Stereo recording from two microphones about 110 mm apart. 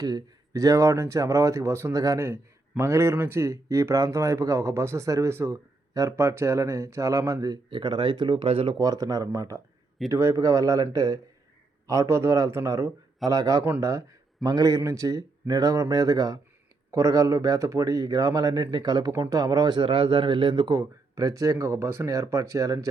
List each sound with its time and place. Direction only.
0.0 s speech: 35° right (ahead or behind)
8.4 s speech: 55° right (ahead or behind)
8.8 s speech: 35° right (ahead or behind)
20.7 s speech: 30° right (ahead or behind)